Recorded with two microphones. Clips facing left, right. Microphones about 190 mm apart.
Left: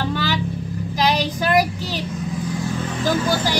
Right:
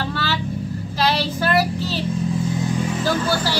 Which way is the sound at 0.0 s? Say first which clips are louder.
Left 2 dB; 15° left (ahead or behind).